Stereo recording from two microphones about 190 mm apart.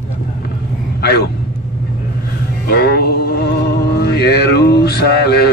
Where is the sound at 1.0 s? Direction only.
55° left (ahead or behind).